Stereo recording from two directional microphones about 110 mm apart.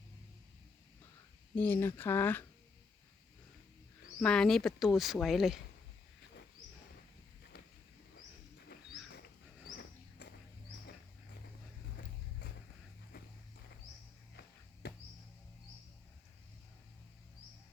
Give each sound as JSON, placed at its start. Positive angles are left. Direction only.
{"t": 1.5, "sound": "speech", "side_deg": 20}
{"t": 4.2, "sound": "speech", "side_deg": 5}